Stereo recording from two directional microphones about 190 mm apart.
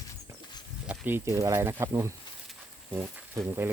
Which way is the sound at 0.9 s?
10° right (ahead or behind).